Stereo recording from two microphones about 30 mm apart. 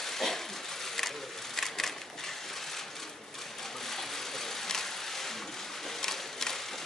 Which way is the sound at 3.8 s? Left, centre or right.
Centre.